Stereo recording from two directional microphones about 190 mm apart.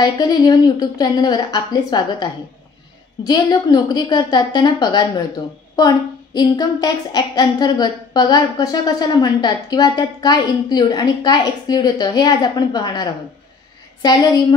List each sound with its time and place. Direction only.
0.0 s a woman's voice: 20° left (ahead or behind)
3.3 s a woman's voice: 20° left (ahead or behind)